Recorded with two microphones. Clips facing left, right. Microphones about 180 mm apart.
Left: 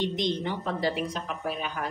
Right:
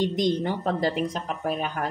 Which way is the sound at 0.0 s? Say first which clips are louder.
Right 4 dB; 45° right (ahead or behind).